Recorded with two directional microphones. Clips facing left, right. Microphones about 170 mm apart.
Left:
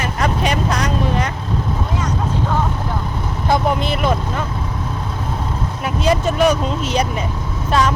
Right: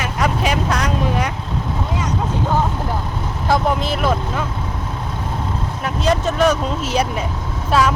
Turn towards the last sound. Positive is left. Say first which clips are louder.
# even
turn(degrees=-5)  # may be behind; listen again after turning